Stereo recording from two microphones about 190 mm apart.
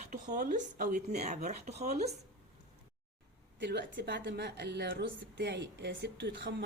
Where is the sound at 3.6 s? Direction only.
65° right (ahead or behind).